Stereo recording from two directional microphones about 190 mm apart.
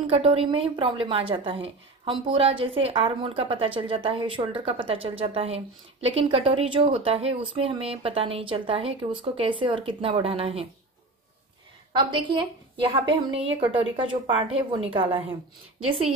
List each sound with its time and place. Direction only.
0.0 s a woman's voice: 30° right (ahead or behind)
11.9 s a woman's voice: 25° right (ahead or behind)